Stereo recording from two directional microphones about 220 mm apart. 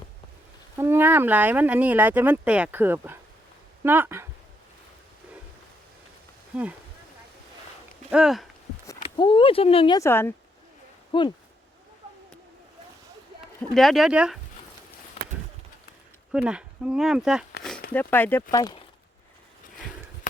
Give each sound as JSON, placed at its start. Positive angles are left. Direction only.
{"t": 0.8, "sound": "speech", "side_deg": -10}
{"t": 6.5, "sound": "speech", "side_deg": -5}
{"t": 8.1, "sound": "speech", "side_deg": 0}
{"t": 9.1, "sound": "speech", "side_deg": 20}
{"t": 11.1, "sound": "speech", "side_deg": 20}
{"t": 13.6, "sound": "speech", "side_deg": 0}
{"t": 15.2, "sound": "a sound", "side_deg": 30}
{"t": 16.3, "sound": "speech", "side_deg": -5}
{"t": 17.9, "sound": "speech", "side_deg": 10}